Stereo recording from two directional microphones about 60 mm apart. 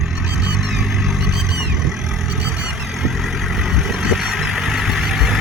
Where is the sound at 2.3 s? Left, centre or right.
Centre.